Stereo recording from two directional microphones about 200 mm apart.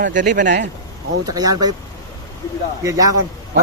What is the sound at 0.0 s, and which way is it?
Speech, 40° right (ahead or behind).